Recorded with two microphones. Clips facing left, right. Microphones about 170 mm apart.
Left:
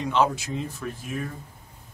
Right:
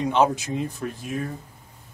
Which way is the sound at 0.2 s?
20° right (ahead or behind).